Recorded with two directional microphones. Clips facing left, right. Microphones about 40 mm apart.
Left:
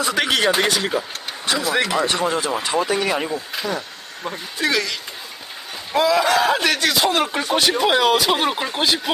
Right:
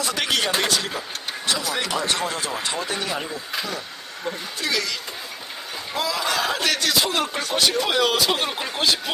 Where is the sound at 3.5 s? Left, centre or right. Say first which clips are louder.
Left 3 dB; centre.